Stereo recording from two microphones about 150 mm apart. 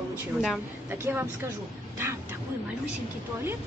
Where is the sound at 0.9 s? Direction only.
15° right (ahead or behind).